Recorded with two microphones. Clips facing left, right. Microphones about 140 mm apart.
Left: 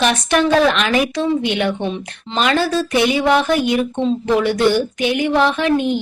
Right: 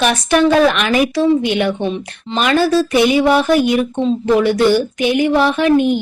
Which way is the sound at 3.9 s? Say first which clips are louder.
Right 3 dB; 5° right (ahead or behind).